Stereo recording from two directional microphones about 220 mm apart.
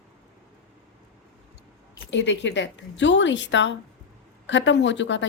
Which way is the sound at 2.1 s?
55° left (ahead or behind).